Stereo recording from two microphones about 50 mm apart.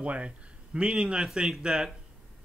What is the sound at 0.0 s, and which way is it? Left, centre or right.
A man's voice, right.